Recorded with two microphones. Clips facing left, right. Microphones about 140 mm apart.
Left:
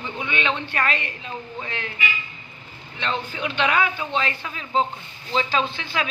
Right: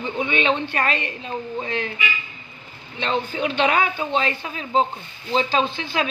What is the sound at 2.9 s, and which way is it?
A man's voice, 30° right (ahead or behind).